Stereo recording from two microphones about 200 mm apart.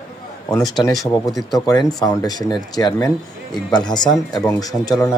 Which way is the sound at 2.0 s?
15° left (ahead or behind).